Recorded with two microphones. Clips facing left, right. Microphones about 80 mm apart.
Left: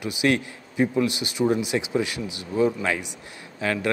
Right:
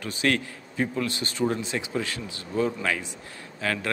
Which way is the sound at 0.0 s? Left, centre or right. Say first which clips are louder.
Left 3 dB; centre.